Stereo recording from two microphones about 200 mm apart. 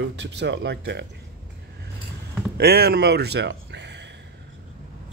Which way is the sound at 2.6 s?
50° right (ahead or behind).